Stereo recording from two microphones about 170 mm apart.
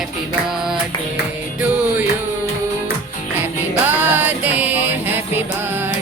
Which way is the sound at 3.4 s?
10° right (ahead or behind).